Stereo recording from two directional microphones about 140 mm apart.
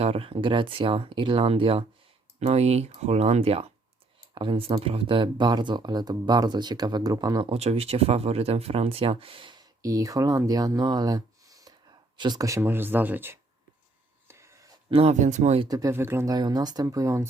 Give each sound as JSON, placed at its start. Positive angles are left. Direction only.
{"t": 0.0, "sound": "speech", "side_deg": -40}
{"t": 7.5, "sound": "speech", "side_deg": -45}
{"t": 14.3, "sound": "a sound", "side_deg": -20}
{"t": 14.8, "sound": "speech", "side_deg": -40}
{"t": 15.1, "sound": "speech", "side_deg": -60}
{"t": 15.6, "sound": "speech", "side_deg": -25}